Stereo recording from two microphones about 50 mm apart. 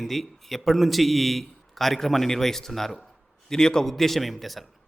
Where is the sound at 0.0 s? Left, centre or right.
Centre.